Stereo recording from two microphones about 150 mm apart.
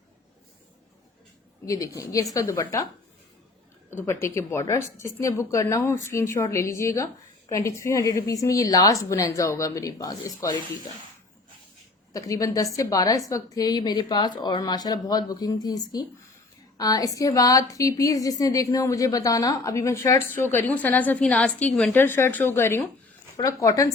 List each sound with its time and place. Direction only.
1.6 s a woman's voice: 20° left (ahead or behind)
12.1 s a woman's voice: 25° left (ahead or behind); by 21.9 s 5° left (ahead or behind)
21.9 s a woman's voice: 15° left (ahead or behind)